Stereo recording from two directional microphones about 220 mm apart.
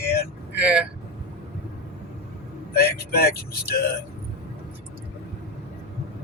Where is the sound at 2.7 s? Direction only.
45° left (ahead or behind).